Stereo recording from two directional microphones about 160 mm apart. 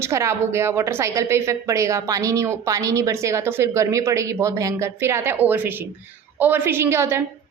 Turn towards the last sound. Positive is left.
turn(degrees=-15)  # may be behind; listen again after turning